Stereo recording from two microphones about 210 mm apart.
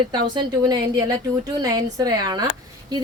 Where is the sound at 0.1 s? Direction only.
20° right (ahead or behind).